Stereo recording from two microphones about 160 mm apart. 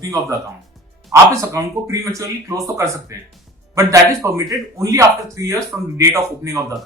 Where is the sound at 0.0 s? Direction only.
20° right (ahead or behind).